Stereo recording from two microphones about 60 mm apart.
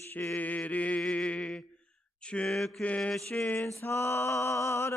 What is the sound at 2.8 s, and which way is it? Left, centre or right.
Mantra, centre.